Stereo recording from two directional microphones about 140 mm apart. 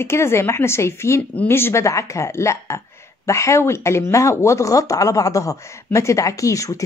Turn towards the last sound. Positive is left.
turn(degrees=25)  # may be behind; listen again after turning